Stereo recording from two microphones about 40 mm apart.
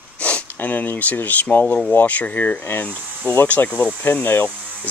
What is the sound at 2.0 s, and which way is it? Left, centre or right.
Speech, left.